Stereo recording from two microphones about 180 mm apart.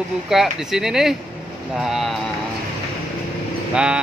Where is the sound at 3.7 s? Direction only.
5° right (ahead or behind).